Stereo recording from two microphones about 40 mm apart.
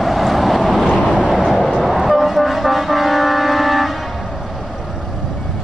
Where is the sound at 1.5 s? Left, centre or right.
Centre.